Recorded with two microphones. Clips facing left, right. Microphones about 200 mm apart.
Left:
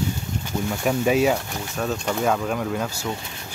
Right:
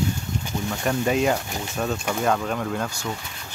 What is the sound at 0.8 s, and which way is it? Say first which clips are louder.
Speech: left 2 dB; 5° left (ahead or behind).